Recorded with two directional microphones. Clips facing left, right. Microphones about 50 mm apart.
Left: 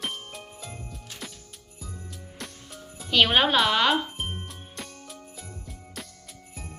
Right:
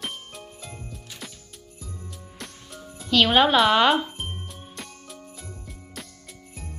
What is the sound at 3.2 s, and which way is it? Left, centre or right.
Speech, centre.